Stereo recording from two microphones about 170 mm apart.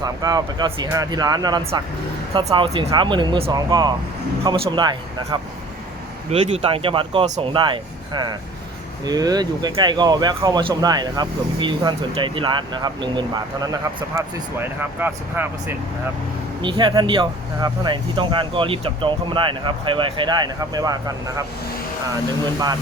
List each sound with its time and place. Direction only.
0.0 s speech: 20° right (ahead or behind); by 2.9 s 40° right (ahead or behind)
2.9 s speech: 25° right (ahead or behind)
7.3 s speech: 40° right (ahead or behind)
7.5 s speech: 25° right (ahead or behind)
14.2 s speech: 15° right (ahead or behind)
16.6 s speech: 30° right (ahead or behind)